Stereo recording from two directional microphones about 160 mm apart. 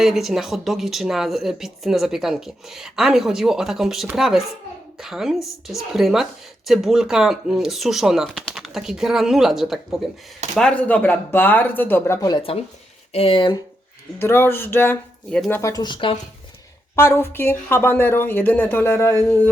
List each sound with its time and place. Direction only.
0.0 s a woman's voice: centre (ahead or behind); by 12.4 s 20° left (ahead or behind)
13.1 s speech: 35° left (ahead or behind)
14.2 s a woman's voice: 15° left (ahead or behind); by 16.1 s 30° left (ahead or behind)
16.9 s a woman's voice: 15° left (ahead or behind)